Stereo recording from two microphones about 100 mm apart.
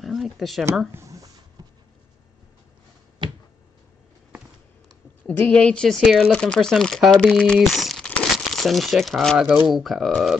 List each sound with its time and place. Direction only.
0.0 s speech: centre (ahead or behind)
0.9 s a sound: 35° right (ahead or behind)
3.2 s finger snapping: 50° right (ahead or behind)
5.2 s a woman's voice: 10° left (ahead or behind)
6.0 s speech: 5° right (ahead or behind)
6.3 s speech: 10° left (ahead or behind)
8.1 s crumpling: 5° left (ahead or behind)
9.7 s speech: centre (ahead or behind)